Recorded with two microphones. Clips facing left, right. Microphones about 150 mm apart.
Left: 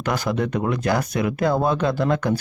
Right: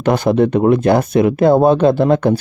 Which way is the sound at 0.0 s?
25° right (ahead or behind).